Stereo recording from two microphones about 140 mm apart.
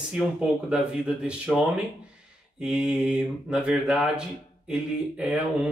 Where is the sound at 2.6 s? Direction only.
5° right (ahead or behind).